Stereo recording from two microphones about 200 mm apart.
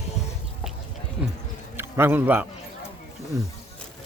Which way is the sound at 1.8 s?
10° right (ahead or behind).